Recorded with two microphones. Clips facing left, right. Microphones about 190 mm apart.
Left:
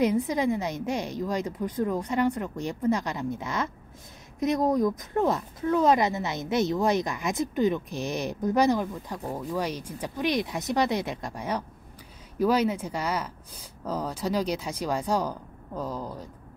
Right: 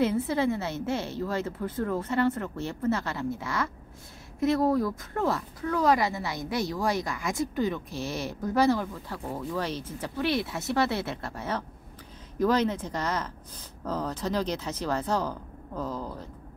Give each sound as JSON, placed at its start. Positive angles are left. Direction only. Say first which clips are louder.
{"t": 0.0, "sound": "speech", "louder": "left 1 dB", "side_deg": 15}